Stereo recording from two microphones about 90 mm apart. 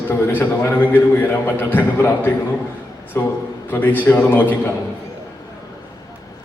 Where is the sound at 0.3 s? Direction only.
25° left (ahead or behind).